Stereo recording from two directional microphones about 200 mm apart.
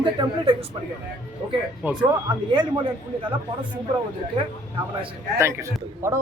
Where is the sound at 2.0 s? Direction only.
25° right (ahead or behind).